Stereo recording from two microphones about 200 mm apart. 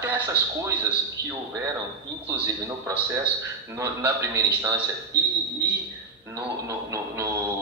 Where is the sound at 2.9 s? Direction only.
15° right (ahead or behind).